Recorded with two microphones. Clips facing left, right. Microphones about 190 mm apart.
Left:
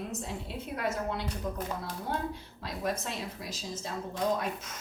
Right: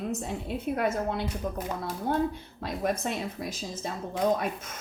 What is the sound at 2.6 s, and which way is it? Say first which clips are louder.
Speech: right 5 dB; 50° right (ahead or behind).